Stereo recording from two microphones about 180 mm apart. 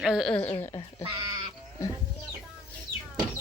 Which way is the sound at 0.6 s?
20° left (ahead or behind).